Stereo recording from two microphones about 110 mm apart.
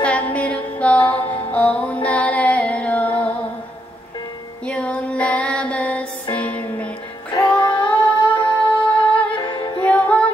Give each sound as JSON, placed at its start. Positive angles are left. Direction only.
{"t": 0.0, "sound": "music", "side_deg": 15}
{"t": 4.6, "sound": "mantra", "side_deg": 10}
{"t": 6.3, "sound": "music", "side_deg": 10}
{"t": 7.6, "sound": "female singing", "side_deg": 15}
{"t": 8.4, "sound": "music", "side_deg": 50}
{"t": 9.8, "sound": "music", "side_deg": 15}